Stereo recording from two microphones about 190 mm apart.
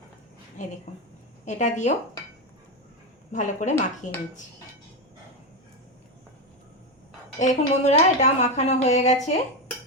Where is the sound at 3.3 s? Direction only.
40° left (ahead or behind).